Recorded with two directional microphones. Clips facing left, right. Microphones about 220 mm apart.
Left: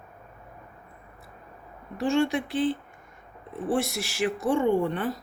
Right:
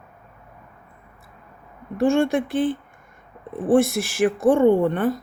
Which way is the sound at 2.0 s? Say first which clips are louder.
Right 5 dB; 50° right (ahead or behind).